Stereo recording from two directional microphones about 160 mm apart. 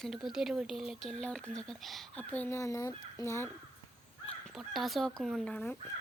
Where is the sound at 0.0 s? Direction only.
Centre (ahead or behind); by 3.5 s 15° left (ahead or behind).